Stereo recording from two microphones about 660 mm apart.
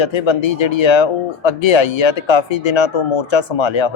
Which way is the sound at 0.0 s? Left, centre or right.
Left.